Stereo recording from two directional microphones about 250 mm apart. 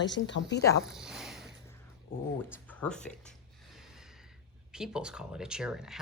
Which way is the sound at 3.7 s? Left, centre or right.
Centre.